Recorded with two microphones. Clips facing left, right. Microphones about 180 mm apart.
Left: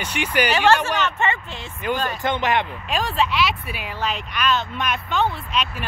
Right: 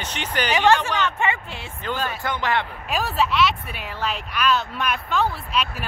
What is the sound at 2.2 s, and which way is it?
Speech, 20° left (ahead or behind).